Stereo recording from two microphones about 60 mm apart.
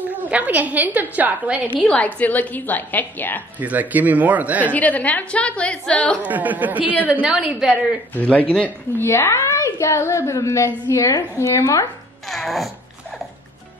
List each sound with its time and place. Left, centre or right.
0.0 s a woman's voice: right
2.0 s a woman's voice: left
3.5 s speech: right
4.7 s a woman's voice: left
6.2 s speech: right
7.3 s a woman's voice: centre
8.1 s a woman's voice: left
9.0 s a woman's voice: left
12.3 s zipper: centre